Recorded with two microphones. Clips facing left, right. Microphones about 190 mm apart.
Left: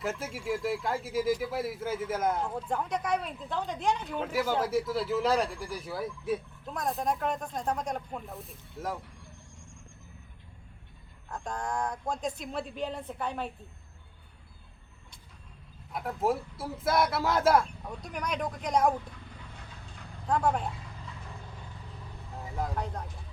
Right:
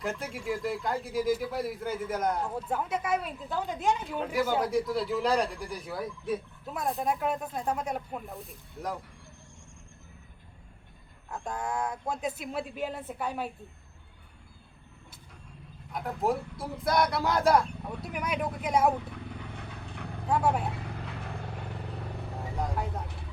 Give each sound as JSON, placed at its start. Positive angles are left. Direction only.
{"t": 0.0, "sound": "speech", "side_deg": 5}
{"t": 11.3, "sound": "speech", "side_deg": -5}
{"t": 15.9, "sound": "speech", "side_deg": 0}
{"t": 19.1, "sound": "vehicle", "side_deg": -65}
{"t": 20.2, "sound": "speech", "side_deg": -5}
{"t": 20.7, "sound": "vehicle", "side_deg": -70}
{"t": 22.5, "sound": "speech", "side_deg": 0}
{"t": 23.0, "sound": "speech", "side_deg": -70}